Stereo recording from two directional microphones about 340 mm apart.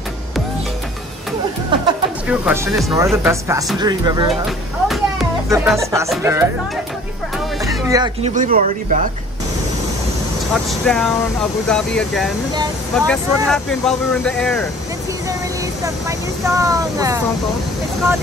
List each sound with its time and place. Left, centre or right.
1.7 s speech: centre
5.5 s speech: centre
7.6 s speech: centre
10.5 s speech: centre
15.8 s speech: centre